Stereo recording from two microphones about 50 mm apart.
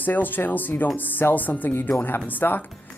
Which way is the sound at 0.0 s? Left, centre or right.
Left.